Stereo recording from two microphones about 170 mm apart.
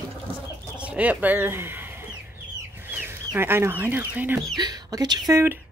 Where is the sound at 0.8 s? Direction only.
10° right (ahead or behind).